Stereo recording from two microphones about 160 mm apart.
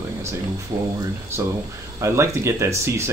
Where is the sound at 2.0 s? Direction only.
15° right (ahead or behind).